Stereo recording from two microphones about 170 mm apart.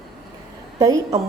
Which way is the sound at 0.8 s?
20° right (ahead or behind).